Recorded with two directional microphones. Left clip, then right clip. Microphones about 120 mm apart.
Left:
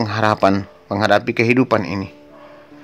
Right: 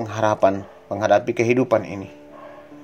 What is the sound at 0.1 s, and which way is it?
Speech, 40° left (ahead or behind).